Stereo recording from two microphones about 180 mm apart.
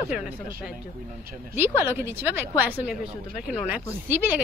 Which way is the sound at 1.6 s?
15° right (ahead or behind).